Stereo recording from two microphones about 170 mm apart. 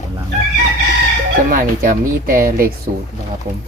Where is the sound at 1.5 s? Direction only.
55° right (ahead or behind).